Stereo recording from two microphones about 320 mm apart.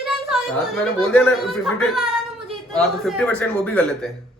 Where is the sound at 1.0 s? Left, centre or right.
Centre.